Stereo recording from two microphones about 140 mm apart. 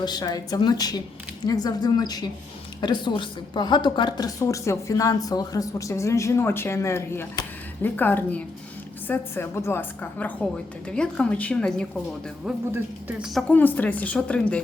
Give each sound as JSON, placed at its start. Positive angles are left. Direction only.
{"t": 0.0, "sound": "a woman's voice", "side_deg": 30}
{"t": 12.7, "sound": "speech", "side_deg": -10}
{"t": 13.5, "sound": "a woman's voice", "side_deg": 10}